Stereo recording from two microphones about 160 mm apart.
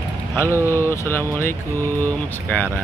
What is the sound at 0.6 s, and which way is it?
Speech, 15° left (ahead or behind).